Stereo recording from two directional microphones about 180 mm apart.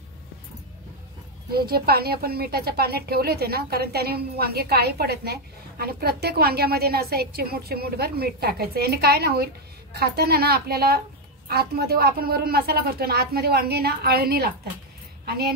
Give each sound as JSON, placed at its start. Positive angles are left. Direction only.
{"t": 1.5, "sound": "a woman's voice", "side_deg": -60}